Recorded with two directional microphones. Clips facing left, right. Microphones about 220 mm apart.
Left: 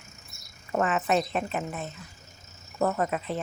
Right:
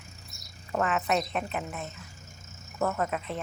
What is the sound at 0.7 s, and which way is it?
Speech, 5° left (ahead or behind).